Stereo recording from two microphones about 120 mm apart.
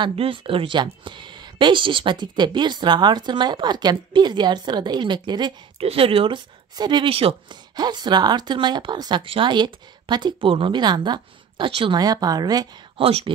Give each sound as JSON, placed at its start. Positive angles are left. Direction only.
{"t": 0.0, "sound": "speech", "side_deg": -50}
{"t": 5.8, "sound": "speech", "side_deg": -55}
{"t": 7.7, "sound": "speech", "side_deg": -35}
{"t": 12.9, "sound": "speech", "side_deg": -55}